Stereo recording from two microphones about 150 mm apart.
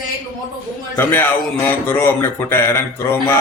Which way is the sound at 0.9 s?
15° left (ahead or behind).